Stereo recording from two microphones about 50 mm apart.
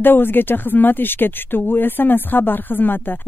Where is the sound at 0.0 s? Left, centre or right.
Left.